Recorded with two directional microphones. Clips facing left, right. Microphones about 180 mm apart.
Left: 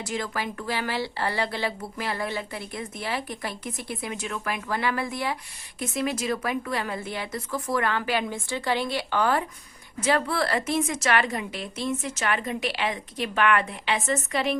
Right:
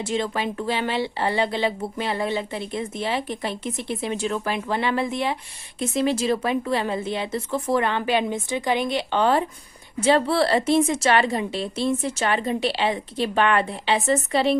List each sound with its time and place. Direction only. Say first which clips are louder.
0.0 s speech: right 5 dB; 25° right (ahead or behind)